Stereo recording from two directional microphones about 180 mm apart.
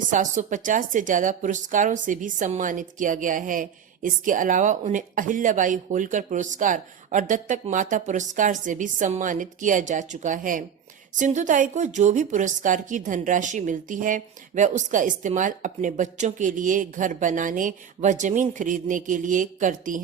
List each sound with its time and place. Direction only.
0.1 s a woman's voice: 45° right (ahead or behind)